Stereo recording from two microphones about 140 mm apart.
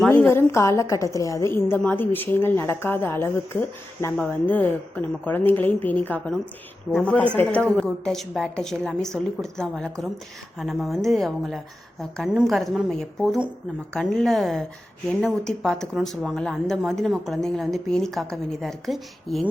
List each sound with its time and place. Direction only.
0.1 s a woman's voice: 15° left (ahead or behind); by 19.5 s centre (ahead or behind)